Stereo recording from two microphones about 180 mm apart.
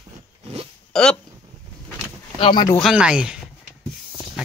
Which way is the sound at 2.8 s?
5° right (ahead or behind).